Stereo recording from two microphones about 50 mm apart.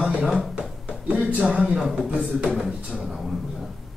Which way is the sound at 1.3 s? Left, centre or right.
Right.